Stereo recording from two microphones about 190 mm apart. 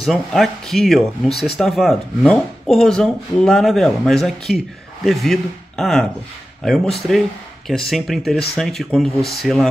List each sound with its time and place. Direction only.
0.0 s speech: centre (ahead or behind)